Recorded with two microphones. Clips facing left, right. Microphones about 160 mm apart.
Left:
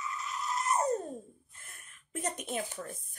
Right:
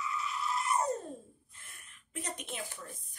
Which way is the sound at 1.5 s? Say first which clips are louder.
Left 2 dB; 50° left (ahead or behind).